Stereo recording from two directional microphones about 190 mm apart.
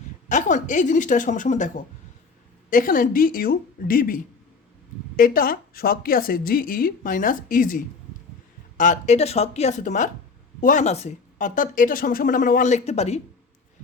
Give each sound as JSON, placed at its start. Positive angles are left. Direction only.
{"t": 0.3, "sound": "speech", "side_deg": 40}
{"t": 8.8, "sound": "speech", "side_deg": 40}